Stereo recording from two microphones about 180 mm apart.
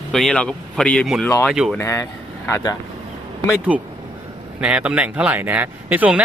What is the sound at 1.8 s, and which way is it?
Speech, 15° left (ahead or behind).